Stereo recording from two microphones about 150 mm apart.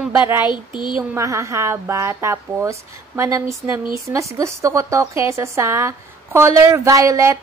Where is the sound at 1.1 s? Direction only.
20° right (ahead or behind).